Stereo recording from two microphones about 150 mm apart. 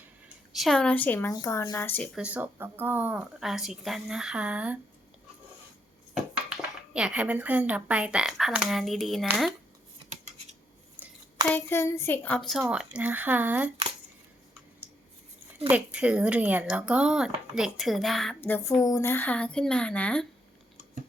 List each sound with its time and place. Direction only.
0.5 s a woman's voice: centre (ahead or behind)
2.1 s speech: 10° right (ahead or behind)
6.9 s speech: 5° right (ahead or behind)
11.5 s a woman's voice: 15° left (ahead or behind); by 13.7 s 10° right (ahead or behind)
15.7 s speech: 10° right (ahead or behind)
18.3 s a woman's voice: 15° left (ahead or behind)